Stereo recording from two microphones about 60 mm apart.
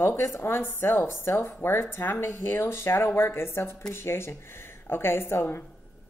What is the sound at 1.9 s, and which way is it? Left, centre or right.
Speech, left.